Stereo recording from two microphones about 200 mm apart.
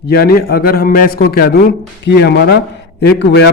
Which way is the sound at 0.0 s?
50° left (ahead or behind).